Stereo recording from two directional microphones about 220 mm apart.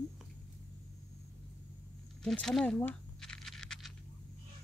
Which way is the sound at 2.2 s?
Centre (ahead or behind).